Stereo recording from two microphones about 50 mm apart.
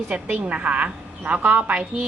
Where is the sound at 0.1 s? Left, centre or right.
Right.